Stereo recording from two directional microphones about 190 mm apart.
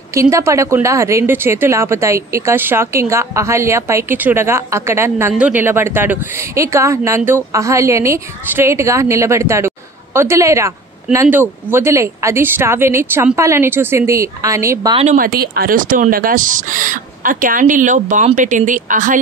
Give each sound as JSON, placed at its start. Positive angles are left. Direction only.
{"t": 0.1, "sound": "a woman's voice", "side_deg": -15}
{"t": 15.1, "sound": "speech", "side_deg": -50}